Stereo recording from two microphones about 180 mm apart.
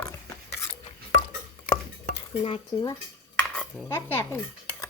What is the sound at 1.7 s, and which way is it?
Chopping, 30° left (ahead or behind).